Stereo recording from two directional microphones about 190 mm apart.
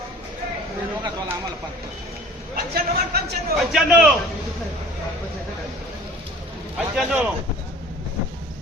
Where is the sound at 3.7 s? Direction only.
Centre (ahead or behind).